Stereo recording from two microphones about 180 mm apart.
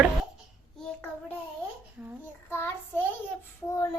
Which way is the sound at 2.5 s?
15° left (ahead or behind).